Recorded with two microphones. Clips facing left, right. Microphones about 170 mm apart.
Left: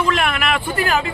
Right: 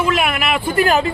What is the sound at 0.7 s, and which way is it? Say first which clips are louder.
Speech: right 6 dB; 20° right (ahead or behind).